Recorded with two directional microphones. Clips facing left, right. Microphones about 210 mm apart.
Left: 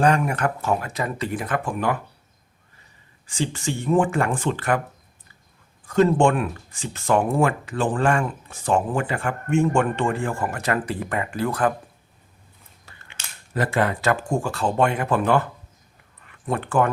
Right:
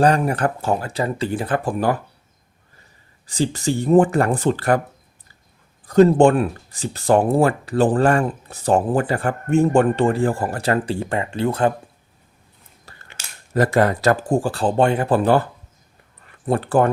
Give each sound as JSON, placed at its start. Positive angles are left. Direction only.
{"t": 0.0, "sound": "speech", "side_deg": -35}
{"t": 3.2, "sound": "speech", "side_deg": -35}
{"t": 5.8, "sound": "speech", "side_deg": -35}
{"t": 12.8, "sound": "a sound", "side_deg": -40}
{"t": 13.5, "sound": "speech", "side_deg": -40}